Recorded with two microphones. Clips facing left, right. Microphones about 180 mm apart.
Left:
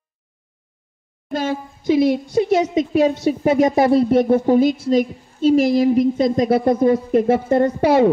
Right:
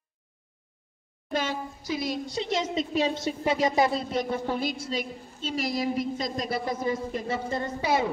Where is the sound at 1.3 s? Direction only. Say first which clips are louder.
Left 7 dB; 50° left (ahead or behind).